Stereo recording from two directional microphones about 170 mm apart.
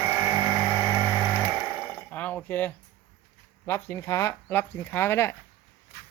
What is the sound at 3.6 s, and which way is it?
Speech, 15° left (ahead or behind).